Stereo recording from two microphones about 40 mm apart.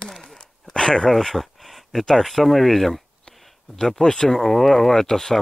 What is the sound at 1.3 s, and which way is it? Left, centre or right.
Speech, centre.